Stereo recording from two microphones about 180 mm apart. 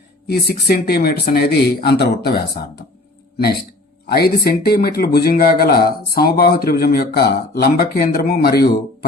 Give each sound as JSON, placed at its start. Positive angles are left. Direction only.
{"t": 0.3, "sound": "speech", "side_deg": 60}
{"t": 4.0, "sound": "speech", "side_deg": 60}